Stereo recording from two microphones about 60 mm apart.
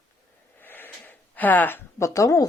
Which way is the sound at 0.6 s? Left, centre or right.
Left.